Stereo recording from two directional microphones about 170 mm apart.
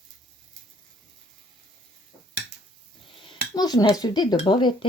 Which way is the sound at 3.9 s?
25° left (ahead or behind).